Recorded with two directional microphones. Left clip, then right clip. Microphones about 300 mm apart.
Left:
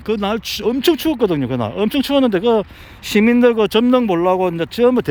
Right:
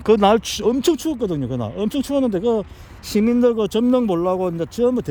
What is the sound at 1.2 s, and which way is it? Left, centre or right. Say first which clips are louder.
Speech: left 7 dB; left.